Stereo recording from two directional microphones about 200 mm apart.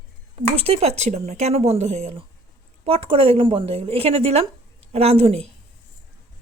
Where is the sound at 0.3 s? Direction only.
30° right (ahead or behind).